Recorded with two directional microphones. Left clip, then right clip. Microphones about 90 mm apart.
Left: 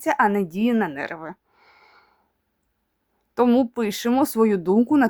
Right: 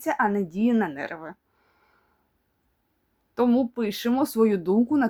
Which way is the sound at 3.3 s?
50° left (ahead or behind).